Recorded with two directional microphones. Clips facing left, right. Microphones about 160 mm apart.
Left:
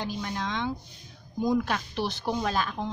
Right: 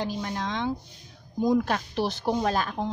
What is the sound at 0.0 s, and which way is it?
Speech, 40° right (ahead or behind).